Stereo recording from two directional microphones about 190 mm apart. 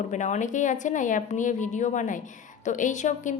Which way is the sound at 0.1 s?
40° left (ahead or behind).